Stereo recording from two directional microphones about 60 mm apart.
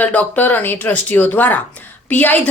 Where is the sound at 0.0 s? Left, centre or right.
Left.